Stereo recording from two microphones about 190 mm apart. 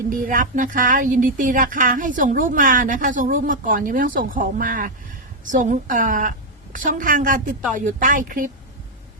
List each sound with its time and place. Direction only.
0.1 s speech: 45° right (ahead or behind)